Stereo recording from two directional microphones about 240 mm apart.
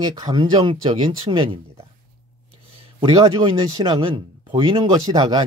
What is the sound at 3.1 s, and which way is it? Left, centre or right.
Speech, centre.